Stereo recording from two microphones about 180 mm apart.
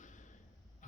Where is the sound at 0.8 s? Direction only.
45° left (ahead or behind).